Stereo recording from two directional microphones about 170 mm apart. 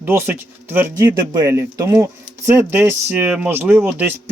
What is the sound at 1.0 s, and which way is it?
Speech, 20° right (ahead or behind).